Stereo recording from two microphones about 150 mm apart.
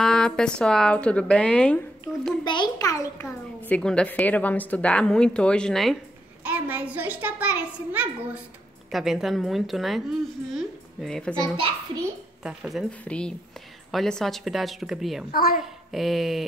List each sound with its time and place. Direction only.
0.0 s a woman's voice: 5° left (ahead or behind)
2.4 s a child's voice: 30° left (ahead or behind); by 5.9 s 5° left (ahead or behind)
6.4 s a child's voice: 10° right (ahead or behind)
15.3 s a child's voice: 75° left (ahead or behind)
15.9 s a woman's voice: centre (ahead or behind)